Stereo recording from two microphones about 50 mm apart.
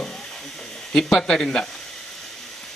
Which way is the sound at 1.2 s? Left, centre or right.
Centre.